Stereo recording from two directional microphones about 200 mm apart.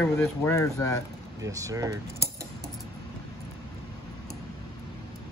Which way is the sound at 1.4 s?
15° right (ahead or behind).